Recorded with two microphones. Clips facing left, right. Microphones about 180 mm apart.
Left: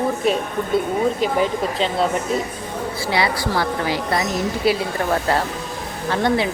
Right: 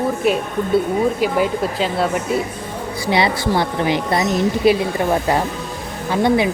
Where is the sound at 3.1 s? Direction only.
20° right (ahead or behind).